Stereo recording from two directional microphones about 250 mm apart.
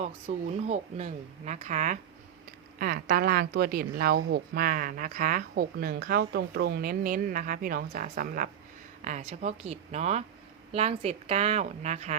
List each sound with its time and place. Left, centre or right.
0.0 s a woman's voice: right